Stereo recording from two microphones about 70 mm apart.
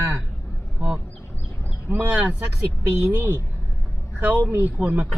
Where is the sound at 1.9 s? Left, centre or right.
Right.